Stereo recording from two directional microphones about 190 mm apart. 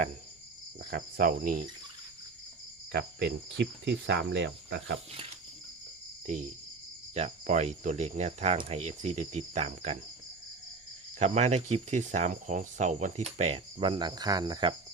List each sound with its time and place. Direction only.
0.8 s cricket: 50° right (ahead or behind)
2.9 s cricket: 60° right (ahead or behind)
6.2 s speech: 40° right (ahead or behind)
11.2 s speech: 35° right (ahead or behind)